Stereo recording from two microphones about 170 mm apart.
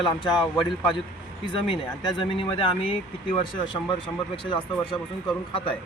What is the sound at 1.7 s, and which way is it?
Speech, 30° left (ahead or behind).